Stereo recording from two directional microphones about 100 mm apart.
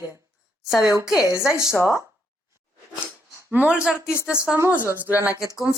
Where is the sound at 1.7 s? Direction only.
30° left (ahead or behind).